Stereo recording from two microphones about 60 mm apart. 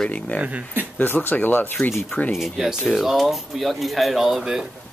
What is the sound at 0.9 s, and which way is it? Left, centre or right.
Speech, left.